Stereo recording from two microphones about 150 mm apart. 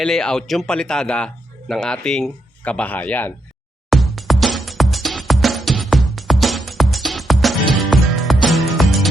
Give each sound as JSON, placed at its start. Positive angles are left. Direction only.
{"t": 0.0, "sound": "speech", "side_deg": 5}
{"t": 3.8, "sound": "music", "side_deg": 0}